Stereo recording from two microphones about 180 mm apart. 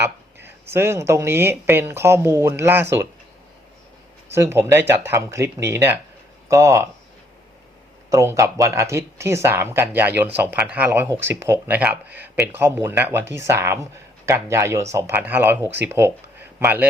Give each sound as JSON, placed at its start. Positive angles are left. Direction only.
{"t": 0.4, "sound": "speech", "side_deg": -15}
{"t": 4.3, "sound": "speech", "side_deg": -15}
{"t": 8.1, "sound": "speech", "side_deg": -15}